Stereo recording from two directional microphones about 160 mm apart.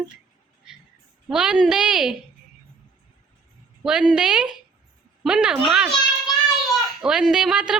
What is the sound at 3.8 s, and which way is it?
A woman's voice, 5° right (ahead or behind).